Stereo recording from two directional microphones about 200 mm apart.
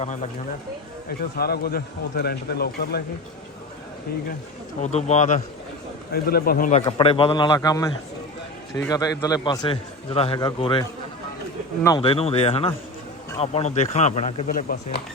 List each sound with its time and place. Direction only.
0.0 s a man's voice: 35° left (ahead or behind)
1.2 s speech: 50° left (ahead or behind)
4.8 s a man's voice: 35° left (ahead or behind)
6.1 s speech: 50° left (ahead or behind)
6.8 s a man's voice: 25° left (ahead or behind)
12.0 s a man's voice: 30° left (ahead or behind)